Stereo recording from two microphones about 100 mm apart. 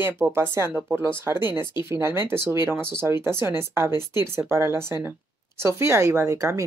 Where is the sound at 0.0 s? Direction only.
25° right (ahead or behind).